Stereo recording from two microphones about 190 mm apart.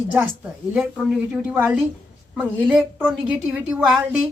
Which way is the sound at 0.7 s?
5° right (ahead or behind).